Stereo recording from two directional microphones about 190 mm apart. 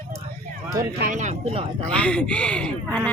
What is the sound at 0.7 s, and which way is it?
Speech, 45° right (ahead or behind).